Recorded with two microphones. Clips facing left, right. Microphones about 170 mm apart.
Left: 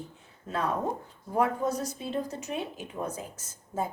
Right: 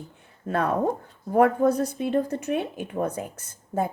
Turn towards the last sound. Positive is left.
turn(degrees=-60)  # may be behind; listen again after turning